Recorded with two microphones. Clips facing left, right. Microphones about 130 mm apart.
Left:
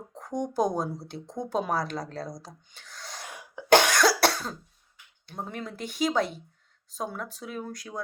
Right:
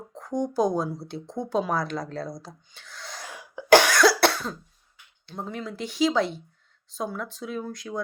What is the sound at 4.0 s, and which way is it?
Cough, 40° left (ahead or behind).